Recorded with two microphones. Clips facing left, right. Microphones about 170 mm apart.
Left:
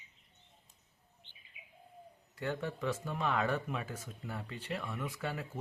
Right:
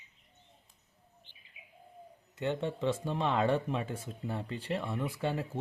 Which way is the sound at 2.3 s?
25° right (ahead or behind).